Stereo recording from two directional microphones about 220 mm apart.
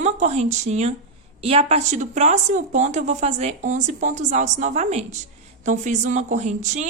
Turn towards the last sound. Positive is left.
turn(degrees=-35)  # may be behind; listen again after turning